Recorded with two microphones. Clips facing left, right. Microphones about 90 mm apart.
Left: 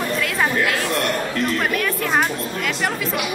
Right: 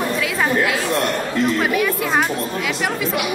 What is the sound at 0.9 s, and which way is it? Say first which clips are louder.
Speech: right 2 dB; 30° right (ahead or behind).